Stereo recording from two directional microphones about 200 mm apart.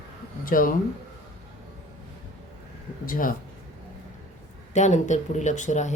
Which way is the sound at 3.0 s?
45° left (ahead or behind).